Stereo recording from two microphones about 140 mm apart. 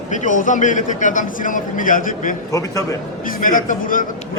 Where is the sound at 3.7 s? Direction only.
75° left (ahead or behind).